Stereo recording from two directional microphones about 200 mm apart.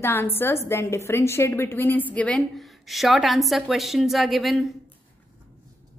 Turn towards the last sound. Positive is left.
turn(degrees=0)  # may be behind; listen again after turning